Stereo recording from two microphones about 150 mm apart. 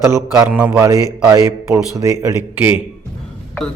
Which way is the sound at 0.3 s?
10° right (ahead or behind).